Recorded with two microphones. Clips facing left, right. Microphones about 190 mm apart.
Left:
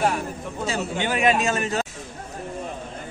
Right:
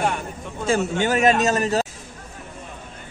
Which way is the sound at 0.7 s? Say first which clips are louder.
Right 6 dB; 45° right (ahead or behind).